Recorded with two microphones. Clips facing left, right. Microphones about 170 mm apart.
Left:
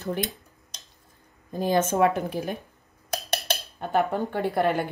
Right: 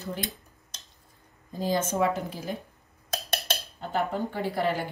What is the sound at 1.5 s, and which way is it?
Speech, 60° left (ahead or behind).